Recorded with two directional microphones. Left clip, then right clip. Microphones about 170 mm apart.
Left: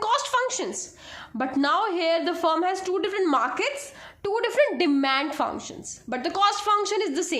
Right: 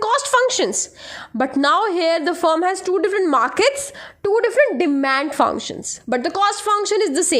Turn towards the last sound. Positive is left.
turn(degrees=-50)  # may be behind; listen again after turning